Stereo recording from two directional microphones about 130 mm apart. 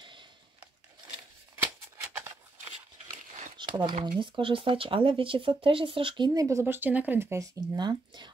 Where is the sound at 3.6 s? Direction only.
35° right (ahead or behind).